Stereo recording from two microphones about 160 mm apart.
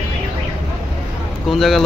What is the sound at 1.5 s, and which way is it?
Speech, centre (ahead or behind).